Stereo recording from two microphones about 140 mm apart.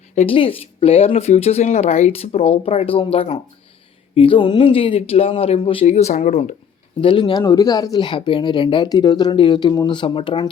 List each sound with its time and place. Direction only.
0.2 s speech: 40° left (ahead or behind)
5.8 s speech: 50° left (ahead or behind)
7.0 s speech: 35° left (ahead or behind)